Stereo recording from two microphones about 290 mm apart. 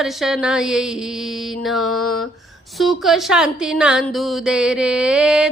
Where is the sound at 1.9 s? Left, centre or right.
Left.